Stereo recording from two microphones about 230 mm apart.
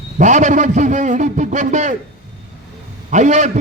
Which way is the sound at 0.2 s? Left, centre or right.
Right.